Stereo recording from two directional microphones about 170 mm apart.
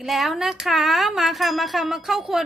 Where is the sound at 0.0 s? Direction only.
Centre (ahead or behind).